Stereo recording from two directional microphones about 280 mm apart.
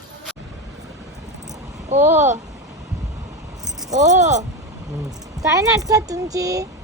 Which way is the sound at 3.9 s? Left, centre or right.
Right.